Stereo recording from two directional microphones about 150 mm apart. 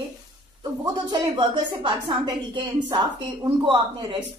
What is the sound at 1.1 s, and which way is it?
A woman's voice, 30° right (ahead or behind).